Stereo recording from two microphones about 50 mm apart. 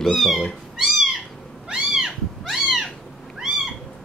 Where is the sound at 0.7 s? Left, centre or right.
Centre.